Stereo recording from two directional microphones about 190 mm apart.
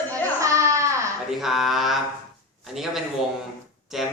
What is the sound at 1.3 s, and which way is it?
A man's voice, centre (ahead or behind).